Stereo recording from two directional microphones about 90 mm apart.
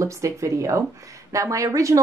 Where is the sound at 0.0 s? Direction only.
35° right (ahead or behind).